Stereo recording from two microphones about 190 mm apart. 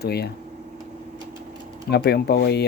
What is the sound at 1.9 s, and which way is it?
Speech, 55° left (ahead or behind).